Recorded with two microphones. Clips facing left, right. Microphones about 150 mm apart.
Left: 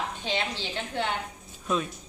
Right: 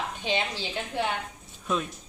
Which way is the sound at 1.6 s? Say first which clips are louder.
Left 1 dB; centre (ahead or behind).